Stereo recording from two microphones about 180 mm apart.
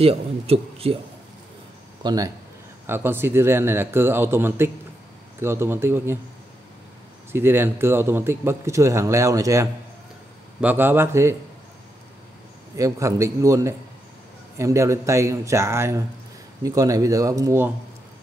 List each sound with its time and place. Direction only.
0.0 s a man's voice: 35° right (ahead or behind)
2.0 s speech: 20° right (ahead or behind)
7.3 s speech: 10° right (ahead or behind)
12.7 s speech: 15° right (ahead or behind)